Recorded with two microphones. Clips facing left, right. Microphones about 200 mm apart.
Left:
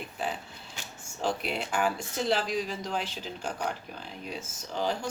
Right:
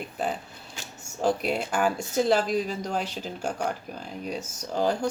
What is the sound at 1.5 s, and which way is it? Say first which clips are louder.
Speech: right 4 dB; 45° right (ahead or behind).